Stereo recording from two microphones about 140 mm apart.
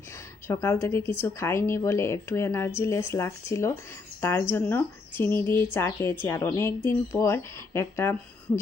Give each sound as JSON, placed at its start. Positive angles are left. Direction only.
{"t": 0.4, "sound": "speech", "side_deg": 20}